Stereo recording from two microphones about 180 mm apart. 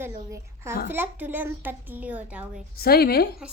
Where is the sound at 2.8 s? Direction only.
60° left (ahead or behind).